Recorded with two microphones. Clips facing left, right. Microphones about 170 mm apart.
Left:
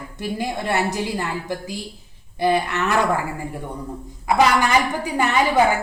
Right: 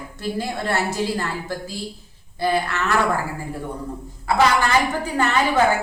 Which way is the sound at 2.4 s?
20° left (ahead or behind).